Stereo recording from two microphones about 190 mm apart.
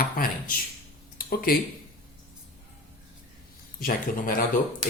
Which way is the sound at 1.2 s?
50° left (ahead or behind).